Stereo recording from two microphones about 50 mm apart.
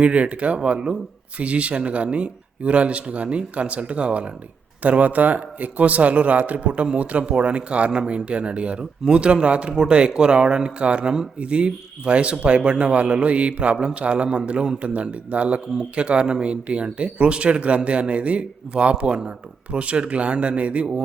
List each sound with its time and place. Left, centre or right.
0.0 s speech: right